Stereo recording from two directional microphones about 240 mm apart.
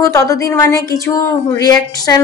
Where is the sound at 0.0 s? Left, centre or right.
Centre.